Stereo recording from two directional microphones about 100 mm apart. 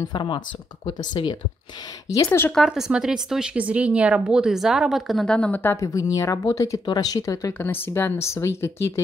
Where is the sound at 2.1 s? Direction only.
30° left (ahead or behind).